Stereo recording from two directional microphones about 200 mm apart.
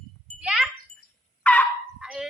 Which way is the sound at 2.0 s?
5° right (ahead or behind).